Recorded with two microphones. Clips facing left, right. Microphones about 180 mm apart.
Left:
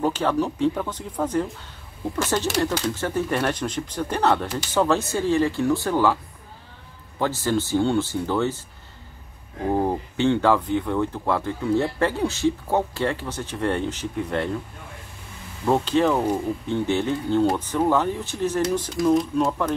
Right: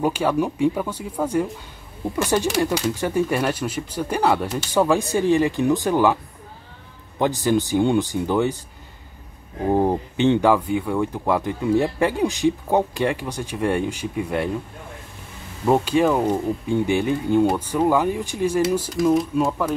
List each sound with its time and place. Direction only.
0.0 s speech: 10° right (ahead or behind)
7.2 s speech: 15° right (ahead or behind)
9.7 s speech: 20° right (ahead or behind)
15.6 s speech: 10° right (ahead or behind)